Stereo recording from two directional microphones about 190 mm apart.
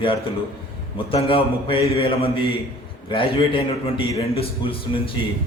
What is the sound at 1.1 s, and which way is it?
A man's voice, 30° left (ahead or behind).